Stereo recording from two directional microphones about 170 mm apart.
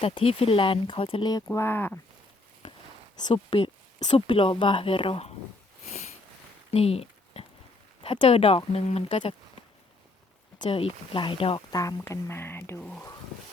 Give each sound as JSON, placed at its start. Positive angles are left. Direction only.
{"t": 0.0, "sound": "speech", "side_deg": 35}
{"t": 3.2, "sound": "speech", "side_deg": 30}
{"t": 5.9, "sound": "sniff", "side_deg": 40}
{"t": 6.7, "sound": "a sound", "side_deg": 35}
{"t": 8.0, "sound": "speech", "side_deg": 30}
{"t": 11.7, "sound": "speech", "side_deg": 20}